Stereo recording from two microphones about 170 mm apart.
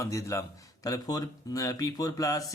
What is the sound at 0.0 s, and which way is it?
A man's voice, 20° left (ahead or behind).